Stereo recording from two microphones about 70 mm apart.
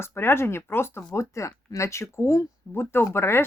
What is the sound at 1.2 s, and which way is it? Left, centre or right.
Speech, left.